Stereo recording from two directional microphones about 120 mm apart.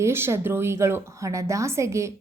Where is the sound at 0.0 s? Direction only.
20° right (ahead or behind).